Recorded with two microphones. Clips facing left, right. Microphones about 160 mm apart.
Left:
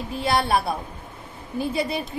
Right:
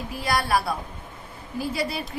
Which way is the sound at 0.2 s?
25° left (ahead or behind).